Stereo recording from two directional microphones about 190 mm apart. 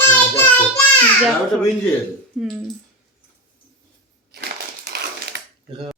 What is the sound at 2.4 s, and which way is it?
Speech, centre (ahead or behind).